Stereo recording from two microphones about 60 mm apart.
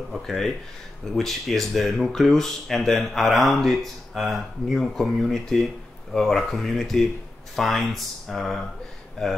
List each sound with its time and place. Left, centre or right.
0.1 s speech: centre